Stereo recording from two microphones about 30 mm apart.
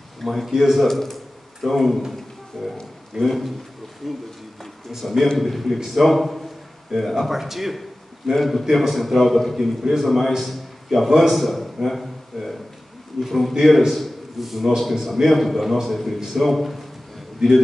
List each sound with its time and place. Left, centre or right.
0.2 s a man's voice: centre
0.8 s a man's voice: centre
17.4 s speech: centre